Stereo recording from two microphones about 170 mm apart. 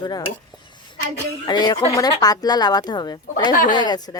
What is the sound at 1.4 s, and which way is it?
Speech, 25° left (ahead or behind).